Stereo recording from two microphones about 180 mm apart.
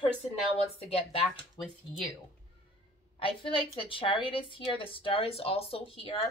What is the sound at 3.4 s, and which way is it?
Speech, 30° left (ahead or behind).